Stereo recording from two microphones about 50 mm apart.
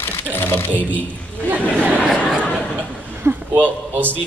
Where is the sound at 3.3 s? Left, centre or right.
Right.